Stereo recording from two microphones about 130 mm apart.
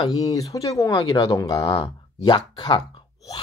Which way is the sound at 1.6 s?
40° left (ahead or behind).